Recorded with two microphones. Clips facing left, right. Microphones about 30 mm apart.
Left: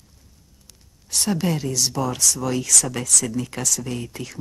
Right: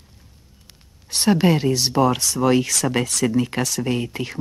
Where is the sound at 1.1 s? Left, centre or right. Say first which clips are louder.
Right 6 dB; right.